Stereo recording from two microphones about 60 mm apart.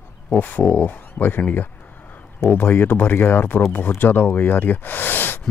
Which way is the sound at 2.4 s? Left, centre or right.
Left.